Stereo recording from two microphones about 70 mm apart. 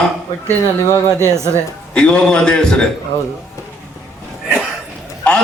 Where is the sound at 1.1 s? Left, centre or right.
Right.